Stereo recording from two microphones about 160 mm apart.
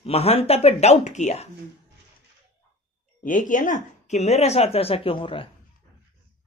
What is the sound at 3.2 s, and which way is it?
Speech, 55° left (ahead or behind).